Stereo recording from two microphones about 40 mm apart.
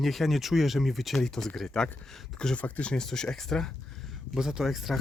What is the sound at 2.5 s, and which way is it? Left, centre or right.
Speech, left.